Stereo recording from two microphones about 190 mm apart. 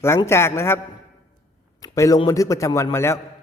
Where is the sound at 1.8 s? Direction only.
20° left (ahead or behind).